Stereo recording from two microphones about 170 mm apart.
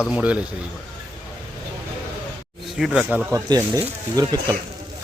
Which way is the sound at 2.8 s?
5° right (ahead or behind).